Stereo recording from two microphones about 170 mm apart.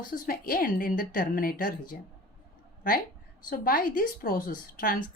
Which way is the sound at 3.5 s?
55° left (ahead or behind).